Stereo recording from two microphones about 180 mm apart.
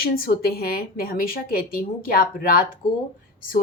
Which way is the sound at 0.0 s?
55° left (ahead or behind).